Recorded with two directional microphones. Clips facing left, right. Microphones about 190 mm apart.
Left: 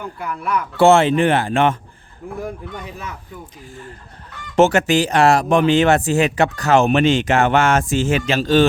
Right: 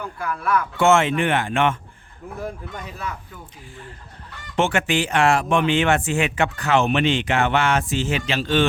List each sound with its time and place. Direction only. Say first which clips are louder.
0.0 s speech: even; 20° left (ahead or behind)
0.8 s speech: left 6 dB; 35° left (ahead or behind)
4.5 s speech: left 7 dB; 40° left (ahead or behind)